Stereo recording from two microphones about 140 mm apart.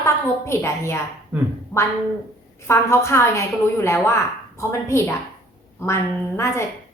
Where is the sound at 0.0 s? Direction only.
20° left (ahead or behind).